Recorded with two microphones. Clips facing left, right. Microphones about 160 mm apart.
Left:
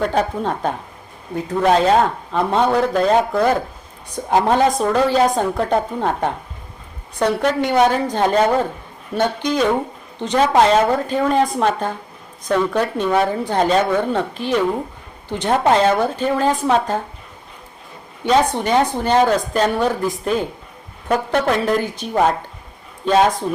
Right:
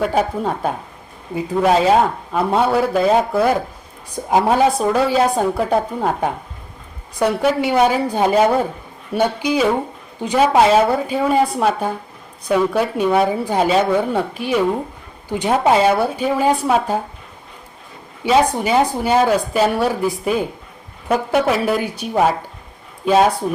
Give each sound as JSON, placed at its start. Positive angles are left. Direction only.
{"t": 0.0, "sound": "a woman's voice", "side_deg": -5}
{"t": 18.2, "sound": "speech", "side_deg": -10}